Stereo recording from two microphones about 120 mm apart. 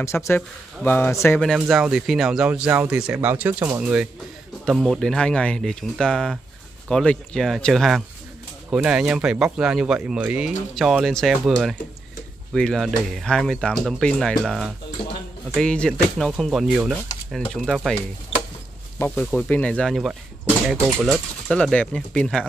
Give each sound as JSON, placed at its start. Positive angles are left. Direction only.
{"t": 0.0, "sound": "speech", "side_deg": 20}
{"t": 1.4, "sound": "speech", "side_deg": 0}
{"t": 8.6, "sound": "speech", "side_deg": -10}
{"t": 18.9, "sound": "speech", "side_deg": 15}
{"t": 19.9, "sound": "speech", "side_deg": 0}
{"t": 21.5, "sound": "speech", "side_deg": 5}